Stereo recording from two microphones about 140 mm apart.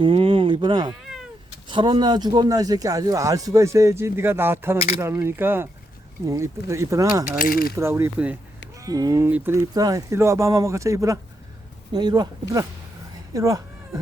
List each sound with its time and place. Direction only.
0.0 s speech: 40° right (ahead or behind); by 7.1 s 20° right (ahead or behind)
7.3 s coin: 85° left
7.8 s speech: 20° right (ahead or behind)
8.8 s speech: 25° right (ahead or behind)